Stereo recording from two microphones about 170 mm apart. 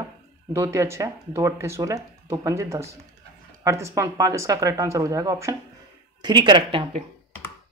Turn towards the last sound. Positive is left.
turn(degrees=-30)  # may be behind; listen again after turning